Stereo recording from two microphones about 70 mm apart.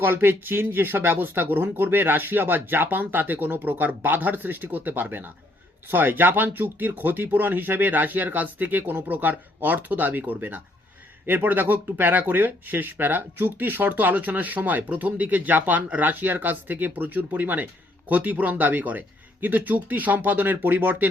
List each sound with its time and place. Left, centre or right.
0.0 s speech: right